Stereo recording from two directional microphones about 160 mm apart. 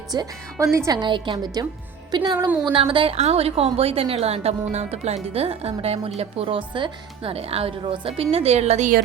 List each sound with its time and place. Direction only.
0.1 s a woman's voice: 25° right (ahead or behind); by 9.0 s 45° right (ahead or behind)